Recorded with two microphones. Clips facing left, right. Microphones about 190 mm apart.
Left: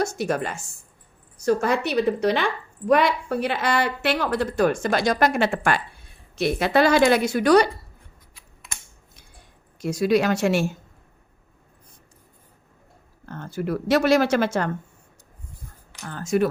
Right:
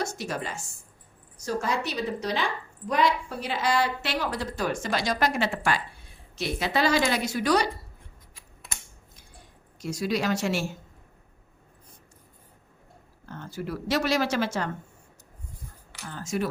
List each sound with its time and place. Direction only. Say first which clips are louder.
0.0 s a woman's voice: left 7 dB; 55° left (ahead or behind)
9.8 s a woman's voice: left 7 dB; 60° left (ahead or behind)
13.2 s a woman's voice: left 6 dB; 50° left (ahead or behind)
16.0 s a woman's voice: left 8 dB; 55° left (ahead or behind)